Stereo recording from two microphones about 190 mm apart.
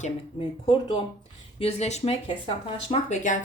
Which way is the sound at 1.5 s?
35° left (ahead or behind).